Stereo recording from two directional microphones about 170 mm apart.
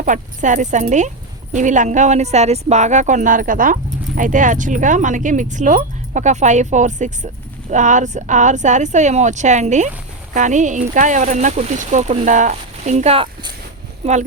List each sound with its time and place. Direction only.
0.0 s speech: 50° right (ahead or behind)